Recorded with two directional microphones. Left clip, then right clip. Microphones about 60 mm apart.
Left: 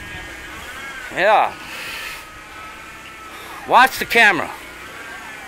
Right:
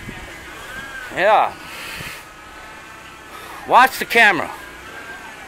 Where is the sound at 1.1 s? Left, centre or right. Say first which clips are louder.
Even; centre.